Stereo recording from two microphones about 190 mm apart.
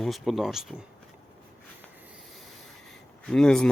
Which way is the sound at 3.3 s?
5° left (ahead or behind).